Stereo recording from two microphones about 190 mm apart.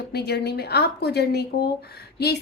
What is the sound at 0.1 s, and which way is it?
A woman's voice, 60° left (ahead or behind).